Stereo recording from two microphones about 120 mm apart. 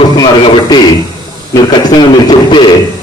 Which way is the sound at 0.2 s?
40° left (ahead or behind).